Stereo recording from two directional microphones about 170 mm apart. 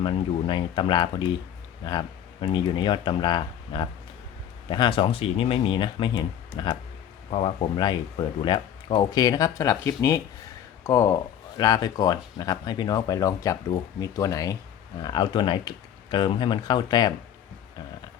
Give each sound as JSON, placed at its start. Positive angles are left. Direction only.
{"t": 0.0, "sound": "speech", "side_deg": 30}